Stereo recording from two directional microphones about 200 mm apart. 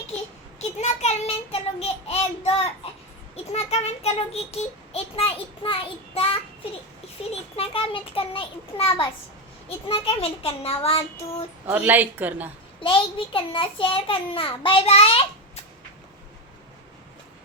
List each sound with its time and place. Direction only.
0.8 s a child's voice: 30° left (ahead or behind)
7.5 s a child's voice: 30° left (ahead or behind)
11.6 s a woman's voice: 10° right (ahead or behind)
12.8 s a child's voice: 25° left (ahead or behind)